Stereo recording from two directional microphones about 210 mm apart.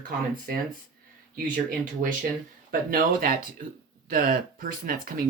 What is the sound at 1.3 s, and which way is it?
Speech, 40° right (ahead or behind).